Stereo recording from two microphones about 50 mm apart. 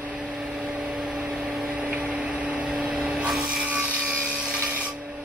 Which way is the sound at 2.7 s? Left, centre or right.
Centre.